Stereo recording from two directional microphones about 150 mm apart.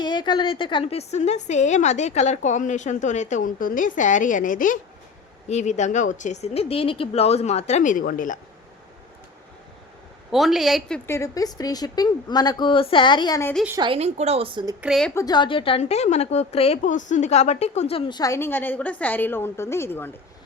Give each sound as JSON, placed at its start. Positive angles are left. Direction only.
{"t": 0.0, "sound": "a woman's voice", "side_deg": 30}
{"t": 5.5, "sound": "a woman's voice", "side_deg": 50}
{"t": 10.3, "sound": "a woman's voice", "side_deg": 0}
{"t": 11.0, "sound": "a woman's voice", "side_deg": 20}
{"t": 13.7, "sound": "a woman's voice", "side_deg": -35}
{"t": 14.8, "sound": "a woman's voice", "side_deg": 0}
{"t": 15.1, "sound": "a woman's voice", "side_deg": 25}
{"t": 18.2, "sound": "a woman's voice", "side_deg": 20}